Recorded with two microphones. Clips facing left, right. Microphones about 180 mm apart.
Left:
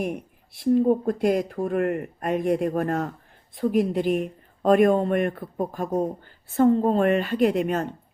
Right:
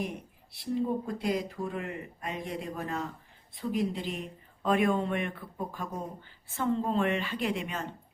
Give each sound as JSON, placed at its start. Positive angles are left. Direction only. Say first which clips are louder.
{"t": 0.0, "sound": "speech", "louder": "left 7 dB", "side_deg": 50}